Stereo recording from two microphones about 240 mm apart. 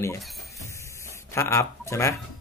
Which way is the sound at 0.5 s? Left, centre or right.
Centre.